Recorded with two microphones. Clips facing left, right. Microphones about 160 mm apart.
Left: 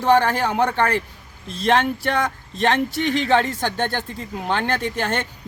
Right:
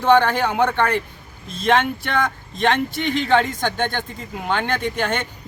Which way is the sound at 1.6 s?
40° left (ahead or behind).